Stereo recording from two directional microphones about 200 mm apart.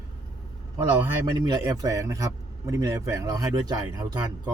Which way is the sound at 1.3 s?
20° right (ahead or behind).